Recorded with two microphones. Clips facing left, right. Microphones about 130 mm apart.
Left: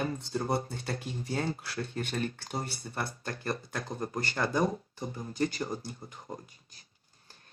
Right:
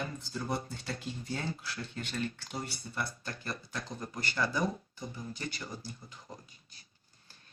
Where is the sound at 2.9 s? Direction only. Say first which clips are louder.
Left 2 dB; 50° left (ahead or behind).